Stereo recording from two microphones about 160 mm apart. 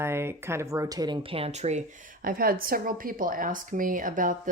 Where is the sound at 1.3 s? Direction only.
40° right (ahead or behind).